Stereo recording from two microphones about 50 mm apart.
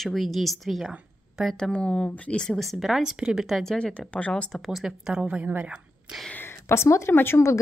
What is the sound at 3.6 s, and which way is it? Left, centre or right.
Speech, centre.